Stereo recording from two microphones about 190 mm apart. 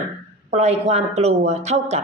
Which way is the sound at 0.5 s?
35° right (ahead or behind).